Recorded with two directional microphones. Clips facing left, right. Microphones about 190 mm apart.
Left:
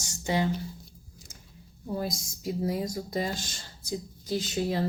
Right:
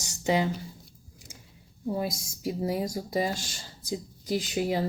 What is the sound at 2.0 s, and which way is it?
Speech, 10° right (ahead or behind).